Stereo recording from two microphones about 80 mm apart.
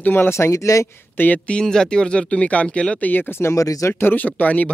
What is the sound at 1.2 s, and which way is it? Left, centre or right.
Speech, centre.